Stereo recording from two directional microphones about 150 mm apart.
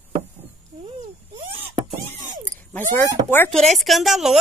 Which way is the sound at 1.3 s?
40° right (ahead or behind).